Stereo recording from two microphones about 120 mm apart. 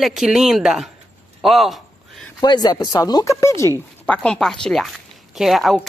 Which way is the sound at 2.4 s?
35° left (ahead or behind).